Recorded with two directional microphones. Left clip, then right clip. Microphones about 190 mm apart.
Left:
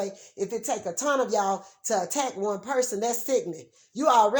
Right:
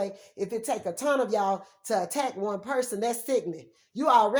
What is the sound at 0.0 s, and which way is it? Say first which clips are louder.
Speech: left 1 dB; 20° left (ahead or behind).